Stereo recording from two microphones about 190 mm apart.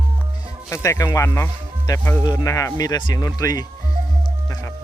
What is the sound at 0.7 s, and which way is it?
Speech, 15° left (ahead or behind).